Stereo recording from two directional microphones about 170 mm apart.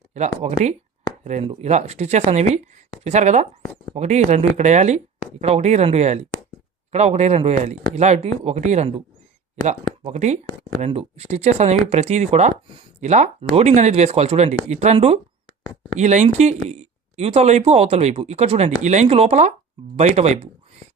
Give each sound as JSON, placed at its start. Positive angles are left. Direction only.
{"t": 0.1, "sound": "speech", "side_deg": -40}